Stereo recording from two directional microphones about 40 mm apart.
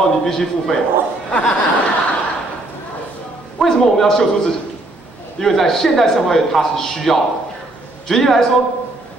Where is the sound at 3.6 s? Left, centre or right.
Centre.